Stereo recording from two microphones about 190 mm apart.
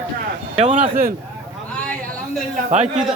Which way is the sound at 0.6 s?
35° right (ahead or behind).